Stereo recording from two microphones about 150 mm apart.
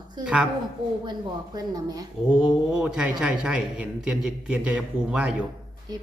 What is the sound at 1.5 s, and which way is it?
Speech, 25° right (ahead or behind).